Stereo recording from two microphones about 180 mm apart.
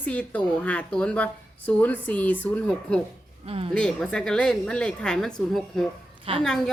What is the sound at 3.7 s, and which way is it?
Speech, 5° left (ahead or behind).